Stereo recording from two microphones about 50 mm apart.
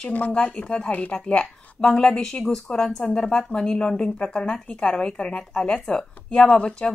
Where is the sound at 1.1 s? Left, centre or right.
Centre.